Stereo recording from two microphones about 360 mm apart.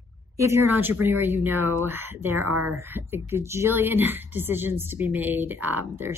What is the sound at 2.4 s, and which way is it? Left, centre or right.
Speech, right.